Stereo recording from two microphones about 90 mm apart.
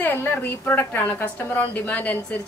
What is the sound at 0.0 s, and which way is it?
A woman's voice, 25° left (ahead or behind).